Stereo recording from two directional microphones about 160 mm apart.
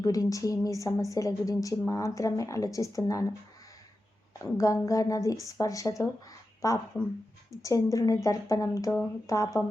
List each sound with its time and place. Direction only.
0.0 s speech: 20° left (ahead or behind)
4.5 s speech: 20° left (ahead or behind)